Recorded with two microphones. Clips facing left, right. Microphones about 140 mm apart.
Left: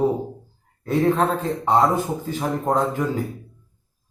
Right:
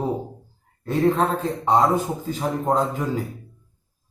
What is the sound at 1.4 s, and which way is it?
Speech, 10° right (ahead or behind).